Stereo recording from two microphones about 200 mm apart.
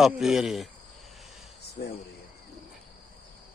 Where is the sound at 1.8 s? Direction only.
55° left (ahead or behind).